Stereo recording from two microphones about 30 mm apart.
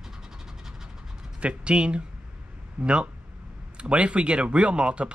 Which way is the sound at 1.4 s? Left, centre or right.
Right.